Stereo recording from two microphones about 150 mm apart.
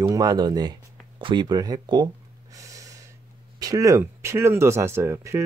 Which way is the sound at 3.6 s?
20° right (ahead or behind).